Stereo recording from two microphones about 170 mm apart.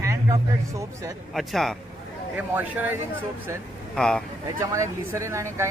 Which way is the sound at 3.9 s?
5° left (ahead or behind).